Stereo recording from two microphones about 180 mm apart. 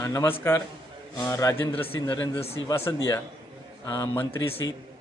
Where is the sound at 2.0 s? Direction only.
30° left (ahead or behind).